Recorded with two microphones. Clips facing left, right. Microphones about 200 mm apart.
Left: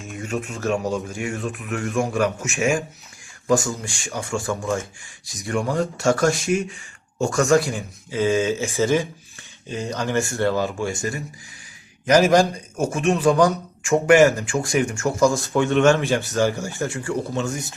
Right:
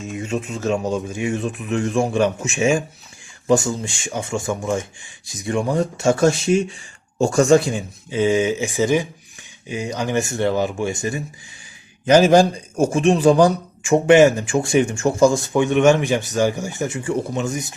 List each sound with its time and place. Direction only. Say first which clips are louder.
0.1 s speech: right 2 dB; 20° right (ahead or behind)